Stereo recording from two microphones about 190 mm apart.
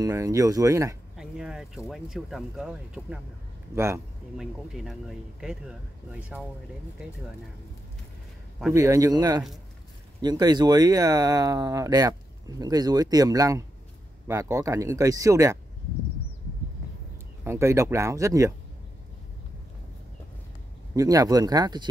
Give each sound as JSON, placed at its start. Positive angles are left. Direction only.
{"t": 0.0, "sound": "speech", "side_deg": -15}
{"t": 1.1, "sound": "speech", "side_deg": -5}
{"t": 3.7, "sound": "speech", "side_deg": -15}
{"t": 4.4, "sound": "speech", "side_deg": 0}
{"t": 8.7, "sound": "speech", "side_deg": -15}
{"t": 17.5, "sound": "speech", "side_deg": -15}
{"t": 20.9, "sound": "speech", "side_deg": -20}